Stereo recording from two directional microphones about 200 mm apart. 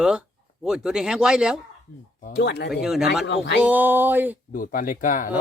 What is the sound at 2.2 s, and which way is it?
Speech, 55° left (ahead or behind).